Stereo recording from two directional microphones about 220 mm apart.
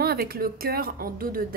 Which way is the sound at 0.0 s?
45° right (ahead or behind).